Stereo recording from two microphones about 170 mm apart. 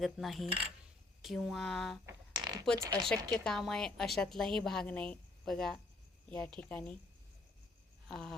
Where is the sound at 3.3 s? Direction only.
5° left (ahead or behind).